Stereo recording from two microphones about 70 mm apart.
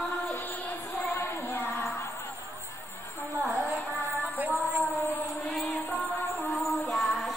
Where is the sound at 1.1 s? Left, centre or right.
Left.